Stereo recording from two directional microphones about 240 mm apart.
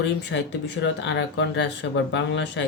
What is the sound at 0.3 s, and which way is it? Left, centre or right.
Speech, left.